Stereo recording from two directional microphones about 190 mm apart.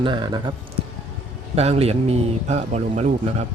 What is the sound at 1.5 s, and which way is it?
Speech, 35° right (ahead or behind).